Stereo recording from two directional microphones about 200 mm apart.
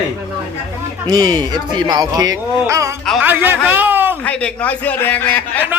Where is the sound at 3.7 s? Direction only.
10° right (ahead or behind).